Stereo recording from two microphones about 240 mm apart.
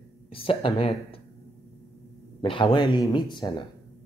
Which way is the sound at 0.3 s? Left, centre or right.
Left.